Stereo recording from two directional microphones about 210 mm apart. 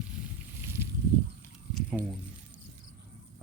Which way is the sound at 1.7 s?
Centre (ahead or behind).